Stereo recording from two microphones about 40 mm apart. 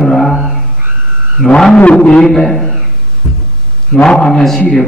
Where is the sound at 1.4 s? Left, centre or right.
Centre.